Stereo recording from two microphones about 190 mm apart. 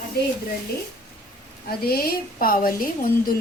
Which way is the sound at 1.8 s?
55° left (ahead or behind).